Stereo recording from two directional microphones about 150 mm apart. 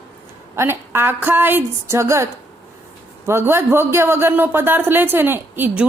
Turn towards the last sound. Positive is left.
turn(degrees=-15)  # may be behind; listen again after turning